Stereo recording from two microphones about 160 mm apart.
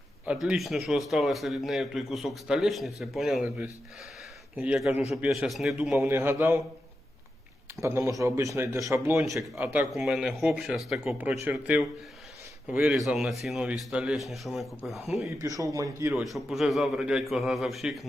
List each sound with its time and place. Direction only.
0.3 s a man's voice: 5° right (ahead or behind)
7.8 s a man's voice: 15° right (ahead or behind); by 14.7 s centre (ahead or behind)
15.4 s speech: 20° right (ahead or behind)
16.2 s a man's voice: centre (ahead or behind)